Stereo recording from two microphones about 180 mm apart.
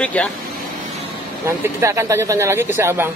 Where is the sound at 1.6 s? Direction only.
15° right (ahead or behind).